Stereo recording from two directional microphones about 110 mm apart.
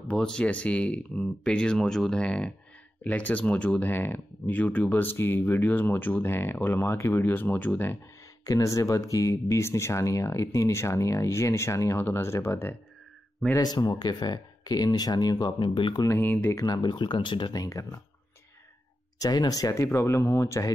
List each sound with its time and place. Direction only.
0.1 s speech: 10° left (ahead or behind)
8.5 s speech: 30° left (ahead or behind)
13.6 s speech: 40° left (ahead or behind)
16.2 s speech: 20° left (ahead or behind)
16.5 s speech: 35° left (ahead or behind)
19.1 s speech: 35° left (ahead or behind)